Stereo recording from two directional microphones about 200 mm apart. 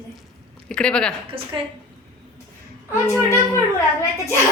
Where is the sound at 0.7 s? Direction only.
5° left (ahead or behind).